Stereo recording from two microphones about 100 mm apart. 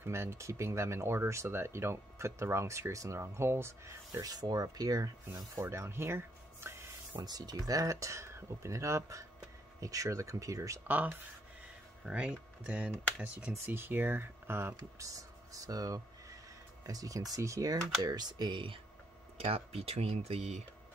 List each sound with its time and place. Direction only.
0.0 s speech: 25° right (ahead or behind)
7.2 s speech: 40° right (ahead or behind)
10.9 s speech: 20° right (ahead or behind)
15.0 s speech: 35° right (ahead or behind); by 18.8 s 50° right (ahead or behind)
19.3 s speech: 85° right